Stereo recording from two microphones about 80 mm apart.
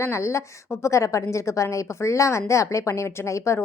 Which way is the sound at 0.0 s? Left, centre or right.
Left.